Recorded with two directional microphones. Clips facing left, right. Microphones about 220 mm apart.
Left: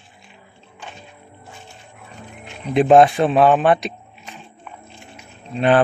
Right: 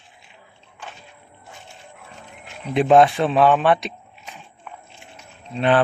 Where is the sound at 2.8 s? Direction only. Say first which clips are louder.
Left 2 dB; 40° left (ahead or behind).